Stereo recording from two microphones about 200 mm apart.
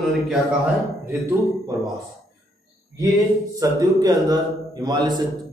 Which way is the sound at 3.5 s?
20° right (ahead or behind).